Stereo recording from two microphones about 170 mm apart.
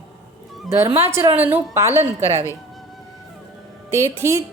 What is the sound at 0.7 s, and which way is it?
A woman's voice, 15° right (ahead or behind).